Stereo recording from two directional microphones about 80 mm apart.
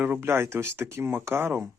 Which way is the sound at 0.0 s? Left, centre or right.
Right.